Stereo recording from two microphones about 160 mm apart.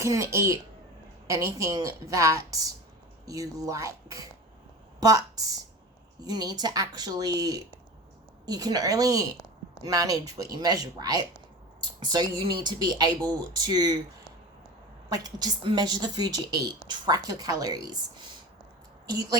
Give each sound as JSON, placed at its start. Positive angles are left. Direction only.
{"t": 0.0, "sound": "a woman's voice", "side_deg": -20}
{"t": 15.1, "sound": "speech", "side_deg": -25}